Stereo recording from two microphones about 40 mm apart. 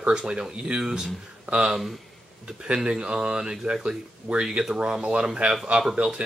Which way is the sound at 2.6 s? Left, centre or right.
Centre.